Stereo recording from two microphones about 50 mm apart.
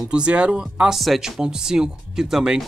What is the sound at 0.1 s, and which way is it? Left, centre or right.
Speech, right.